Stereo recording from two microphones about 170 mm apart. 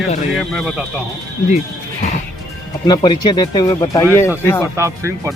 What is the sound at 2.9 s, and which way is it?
Speech, 25° left (ahead or behind).